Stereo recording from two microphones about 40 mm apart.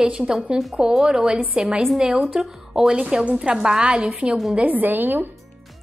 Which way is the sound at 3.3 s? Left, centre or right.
Right.